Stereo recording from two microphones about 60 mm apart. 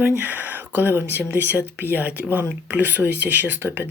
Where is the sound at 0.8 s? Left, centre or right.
Right.